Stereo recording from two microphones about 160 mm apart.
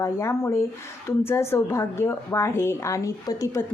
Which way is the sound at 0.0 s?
15° left (ahead or behind).